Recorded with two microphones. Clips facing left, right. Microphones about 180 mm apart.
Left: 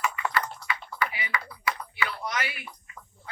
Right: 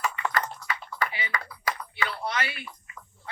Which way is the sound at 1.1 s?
30° right (ahead or behind).